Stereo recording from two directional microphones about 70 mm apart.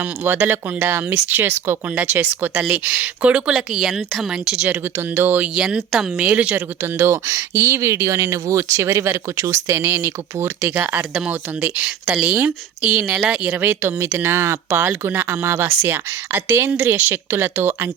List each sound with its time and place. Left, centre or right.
0.0 s speech: right
3.5 s speech: centre
4.9 s speech: right
5.5 s speech: centre
6.1 s speech: right
6.8 s speech: right
11.3 s speech: centre
13.6 s speech: right